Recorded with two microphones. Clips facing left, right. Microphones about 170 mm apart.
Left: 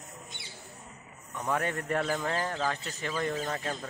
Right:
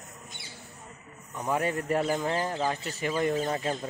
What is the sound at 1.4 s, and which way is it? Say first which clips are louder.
Speech: right 3 dB; 15° right (ahead or behind).